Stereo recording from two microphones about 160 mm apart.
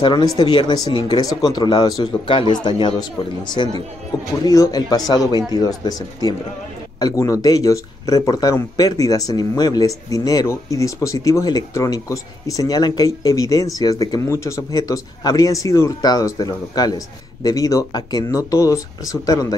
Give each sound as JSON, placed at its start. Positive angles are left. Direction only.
{"t": 0.0, "sound": "speech", "side_deg": 30}